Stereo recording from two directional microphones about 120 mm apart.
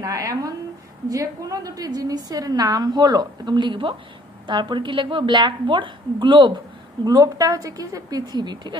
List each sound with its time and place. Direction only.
0.0 s a woman's voice: 30° right (ahead or behind)